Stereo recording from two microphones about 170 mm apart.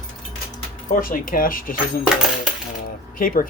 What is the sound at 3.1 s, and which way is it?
Speech, 55° left (ahead or behind).